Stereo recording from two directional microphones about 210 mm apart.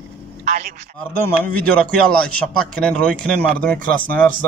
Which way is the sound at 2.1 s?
5° left (ahead or behind).